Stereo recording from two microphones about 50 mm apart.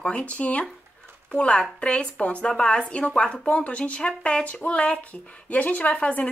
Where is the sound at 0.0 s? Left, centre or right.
Left.